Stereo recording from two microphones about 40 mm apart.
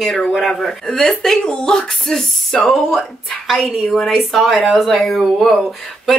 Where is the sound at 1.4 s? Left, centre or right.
Centre.